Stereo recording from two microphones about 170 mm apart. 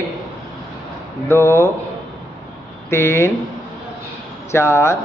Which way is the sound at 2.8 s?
15° left (ahead or behind).